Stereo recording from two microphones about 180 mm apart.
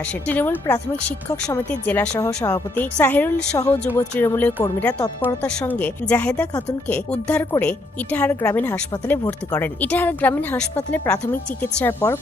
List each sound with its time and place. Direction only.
0.3 s a woman's voice: 10° left (ahead or behind)